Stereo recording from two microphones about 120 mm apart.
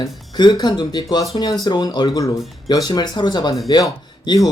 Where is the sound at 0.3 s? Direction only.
35° left (ahead or behind).